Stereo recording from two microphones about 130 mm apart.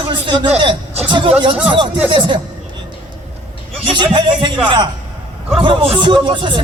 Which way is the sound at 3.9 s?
40° right (ahead or behind).